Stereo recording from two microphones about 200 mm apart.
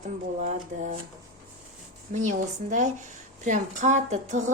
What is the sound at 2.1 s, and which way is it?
A woman's voice, 40° right (ahead or behind).